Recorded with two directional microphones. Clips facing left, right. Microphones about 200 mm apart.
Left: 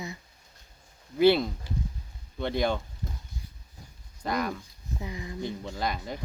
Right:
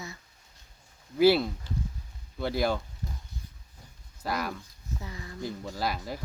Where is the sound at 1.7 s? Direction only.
10° left (ahead or behind).